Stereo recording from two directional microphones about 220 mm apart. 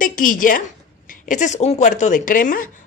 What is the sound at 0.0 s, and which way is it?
A woman's voice, 35° left (ahead or behind).